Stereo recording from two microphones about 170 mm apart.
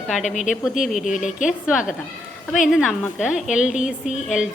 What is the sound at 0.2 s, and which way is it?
Speech, 45° left (ahead or behind).